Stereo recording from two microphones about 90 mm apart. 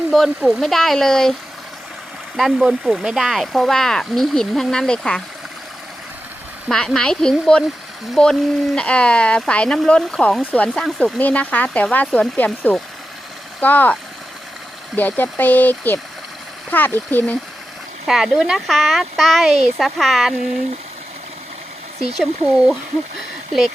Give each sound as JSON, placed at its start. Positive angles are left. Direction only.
{"t": 0.1, "sound": "speech", "side_deg": 0}
{"t": 6.7, "sound": "speech", "side_deg": 5}
{"t": 13.6, "sound": "speech", "side_deg": 20}
{"t": 14.9, "sound": "speech", "side_deg": 20}
{"t": 18.0, "sound": "speech", "side_deg": -5}
{"t": 22.0, "sound": "speech", "side_deg": -10}